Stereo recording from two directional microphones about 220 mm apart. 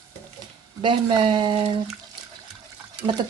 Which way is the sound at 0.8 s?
20° right (ahead or behind).